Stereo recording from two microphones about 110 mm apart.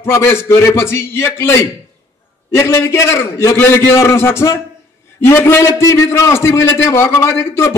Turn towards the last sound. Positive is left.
turn(degrees=25)  # may be behind; listen again after turning